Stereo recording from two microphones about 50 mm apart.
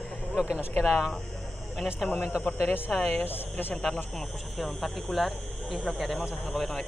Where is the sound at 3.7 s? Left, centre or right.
Left.